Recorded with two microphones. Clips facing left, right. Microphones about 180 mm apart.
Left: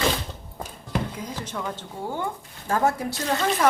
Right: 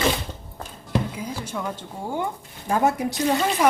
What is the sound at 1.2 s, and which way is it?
A woman's voice, 10° right (ahead or behind).